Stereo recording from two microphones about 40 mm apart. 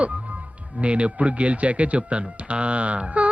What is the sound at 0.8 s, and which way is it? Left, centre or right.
Speech, right.